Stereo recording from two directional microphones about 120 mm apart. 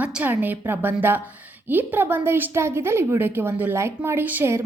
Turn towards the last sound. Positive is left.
turn(degrees=-20)  # may be behind; listen again after turning